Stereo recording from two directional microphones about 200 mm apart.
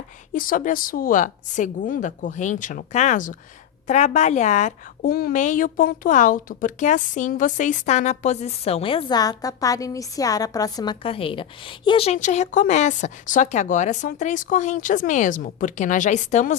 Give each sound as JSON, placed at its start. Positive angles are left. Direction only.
{"t": 0.3, "sound": "a woman's voice", "side_deg": 45}